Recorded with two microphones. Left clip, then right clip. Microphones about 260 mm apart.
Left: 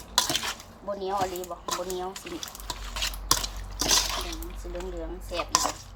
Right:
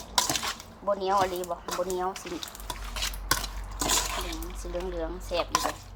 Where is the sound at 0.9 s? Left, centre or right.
Right.